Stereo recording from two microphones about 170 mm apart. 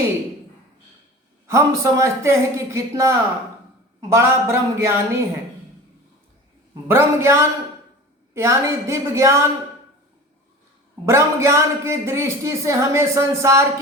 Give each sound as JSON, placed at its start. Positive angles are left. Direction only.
{"t": 1.5, "sound": "a man's voice", "side_deg": -15}
{"t": 6.8, "sound": "a man's voice", "side_deg": -15}
{"t": 11.0, "sound": "a man's voice", "side_deg": -15}